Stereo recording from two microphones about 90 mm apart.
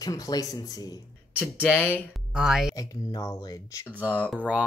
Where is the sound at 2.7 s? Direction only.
40° left (ahead or behind).